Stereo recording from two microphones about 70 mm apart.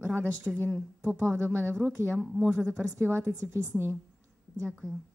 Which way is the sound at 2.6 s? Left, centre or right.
Centre.